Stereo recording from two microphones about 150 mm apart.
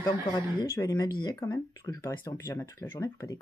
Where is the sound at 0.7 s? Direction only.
20° left (ahead or behind).